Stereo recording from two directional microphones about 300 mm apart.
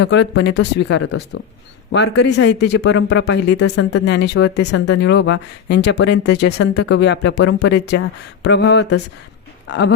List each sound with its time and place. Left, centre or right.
0.0 s a man's voice: left